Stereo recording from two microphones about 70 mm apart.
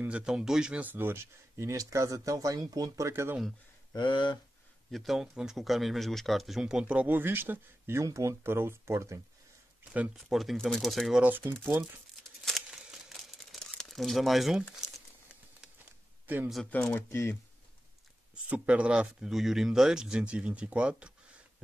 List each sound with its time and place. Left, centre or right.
0.1 s speech: centre
0.8 s speech: right
3.1 s speech: right
3.9 s speech: left
4.9 s speech: centre
7.1 s speech: right
10.1 s speech: centre
11.1 s speech: right
11.5 s speech: centre
13.1 s crumpling: centre
16.7 s speech: left
17.1 s speech: left
18.3 s speech: centre